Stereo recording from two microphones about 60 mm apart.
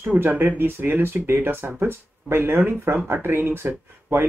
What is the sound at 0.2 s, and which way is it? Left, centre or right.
Speech, right.